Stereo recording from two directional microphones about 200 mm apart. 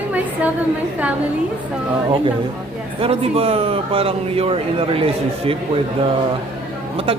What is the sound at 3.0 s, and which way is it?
A man's voice, 30° right (ahead or behind).